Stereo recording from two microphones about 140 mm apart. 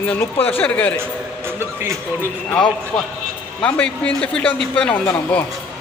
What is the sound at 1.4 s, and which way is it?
Speech, 15° right (ahead or behind).